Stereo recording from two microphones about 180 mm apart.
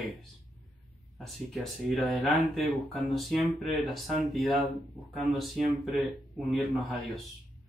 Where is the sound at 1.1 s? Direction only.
Centre (ahead or behind).